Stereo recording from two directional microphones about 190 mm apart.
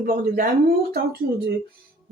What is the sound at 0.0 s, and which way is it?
Speech, 50° right (ahead or behind).